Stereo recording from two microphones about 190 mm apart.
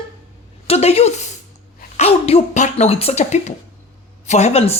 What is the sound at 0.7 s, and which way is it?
Speech, 30° left (ahead or behind).